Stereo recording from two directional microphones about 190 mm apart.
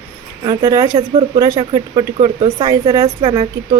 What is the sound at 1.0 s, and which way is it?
Speech, 30° right (ahead or behind).